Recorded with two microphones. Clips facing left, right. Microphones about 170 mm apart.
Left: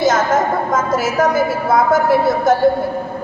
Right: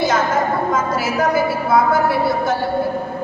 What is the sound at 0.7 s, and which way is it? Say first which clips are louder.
A woman's voice: left 2 dB; 45° left (ahead or behind).